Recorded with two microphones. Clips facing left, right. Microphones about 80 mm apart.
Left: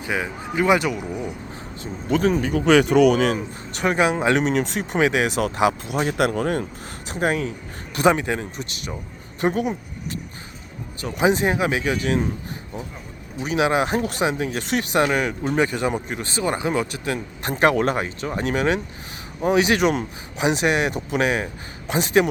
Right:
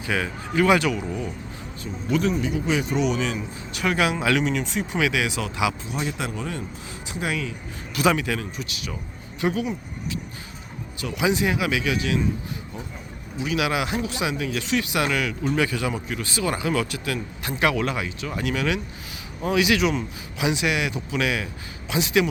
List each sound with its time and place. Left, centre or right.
0.0 s speech: centre
1.8 s speech: left
2.6 s speech: left
3.8 s speech: left
4.4 s speech: left
4.9 s speech: left
5.9 s speech: left
9.4 s speech: left
11.0 s speech: left
13.5 s speech: left